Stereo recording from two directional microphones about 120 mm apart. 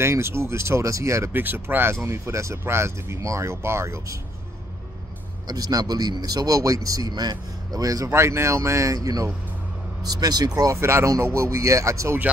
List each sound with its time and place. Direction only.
0.0 s speech: 20° right (ahead or behind)
5.5 s speech: 30° right (ahead or behind)